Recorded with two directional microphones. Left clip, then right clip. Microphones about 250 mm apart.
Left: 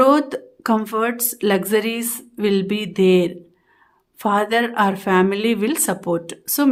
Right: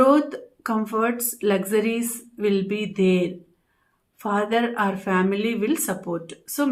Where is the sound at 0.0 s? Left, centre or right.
Left.